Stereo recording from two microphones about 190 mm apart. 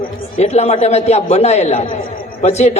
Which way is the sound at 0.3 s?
35° left (ahead or behind).